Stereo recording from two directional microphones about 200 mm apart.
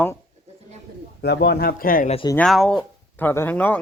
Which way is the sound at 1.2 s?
55° left (ahead or behind).